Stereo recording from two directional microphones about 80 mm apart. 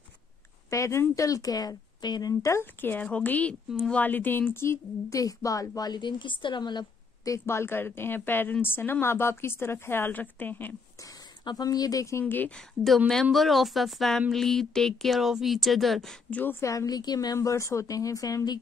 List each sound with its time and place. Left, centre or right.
0.7 s a woman's voice: left
2.6 s a woman's voice: left
5.1 s a woman's voice: left
7.2 s a woman's voice: left
11.4 s a woman's voice: left
12.3 s a woman's voice: left
12.5 s speech: centre
16.3 s a woman's voice: left
16.5 s a woman's voice: left
17.4 s a woman's voice: left